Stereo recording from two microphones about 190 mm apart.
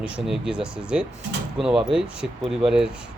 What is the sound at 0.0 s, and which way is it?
Speech, 5° right (ahead or behind).